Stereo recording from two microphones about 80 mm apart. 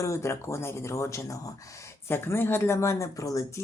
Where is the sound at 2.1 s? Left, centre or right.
Left.